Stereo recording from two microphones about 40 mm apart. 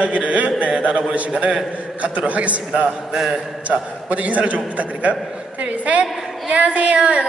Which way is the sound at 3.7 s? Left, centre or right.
Right.